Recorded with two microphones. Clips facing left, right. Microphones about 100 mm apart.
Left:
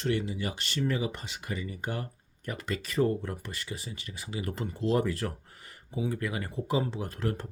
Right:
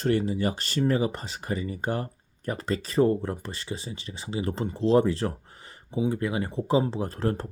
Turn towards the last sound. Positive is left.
turn(degrees=-35)  # may be behind; listen again after turning